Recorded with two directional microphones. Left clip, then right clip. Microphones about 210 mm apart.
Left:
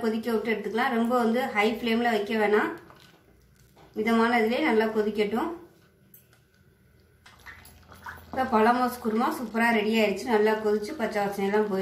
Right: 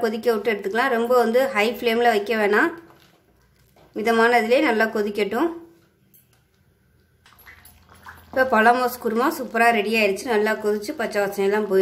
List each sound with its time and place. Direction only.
0.0 s a woman's voice: 50° right (ahead or behind)
3.9 s a woman's voice: 50° right (ahead or behind)
8.5 s a woman's voice: 50° right (ahead or behind)